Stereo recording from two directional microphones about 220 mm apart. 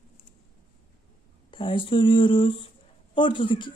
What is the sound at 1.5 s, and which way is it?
Speech, 25° left (ahead or behind).